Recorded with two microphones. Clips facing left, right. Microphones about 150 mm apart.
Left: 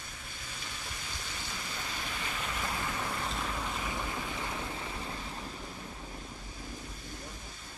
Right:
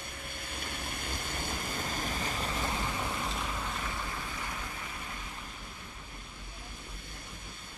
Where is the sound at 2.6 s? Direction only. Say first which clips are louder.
Even; 20° right (ahead or behind).